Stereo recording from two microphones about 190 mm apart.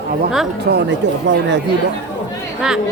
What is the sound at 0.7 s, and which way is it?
Speech, 70° right (ahead or behind).